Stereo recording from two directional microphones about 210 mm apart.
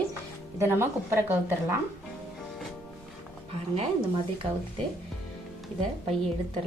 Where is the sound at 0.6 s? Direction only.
10° right (ahead or behind).